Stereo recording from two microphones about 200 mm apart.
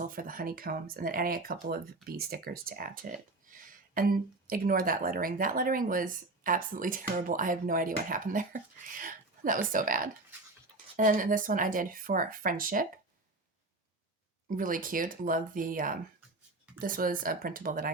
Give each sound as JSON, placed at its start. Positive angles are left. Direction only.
{"t": 0.0, "sound": "speech", "side_deg": -45}
{"t": 14.4, "sound": "speech", "side_deg": -45}